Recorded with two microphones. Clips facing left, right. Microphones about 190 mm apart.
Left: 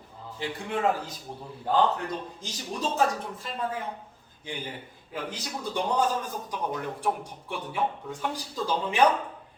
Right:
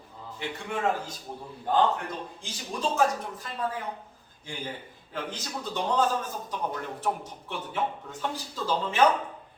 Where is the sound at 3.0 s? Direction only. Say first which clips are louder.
Right 1 dB; 25° left (ahead or behind).